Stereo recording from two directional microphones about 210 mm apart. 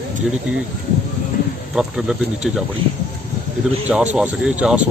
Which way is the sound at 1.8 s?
5° right (ahead or behind).